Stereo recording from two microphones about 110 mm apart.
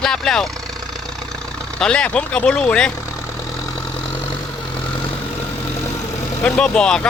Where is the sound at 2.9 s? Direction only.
25° left (ahead or behind).